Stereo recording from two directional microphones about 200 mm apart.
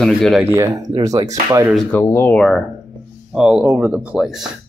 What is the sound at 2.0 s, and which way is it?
Speech, 10° left (ahead or behind).